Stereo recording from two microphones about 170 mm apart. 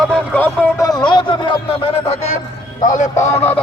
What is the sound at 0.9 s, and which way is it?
Speech, 25° left (ahead or behind).